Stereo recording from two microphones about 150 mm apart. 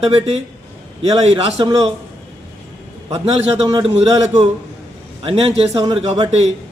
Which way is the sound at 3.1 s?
40° right (ahead or behind).